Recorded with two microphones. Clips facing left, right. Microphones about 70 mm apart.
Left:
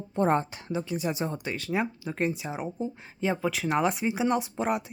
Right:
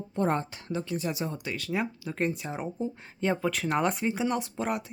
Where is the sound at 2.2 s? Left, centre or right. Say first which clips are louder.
Left 1 dB; centre.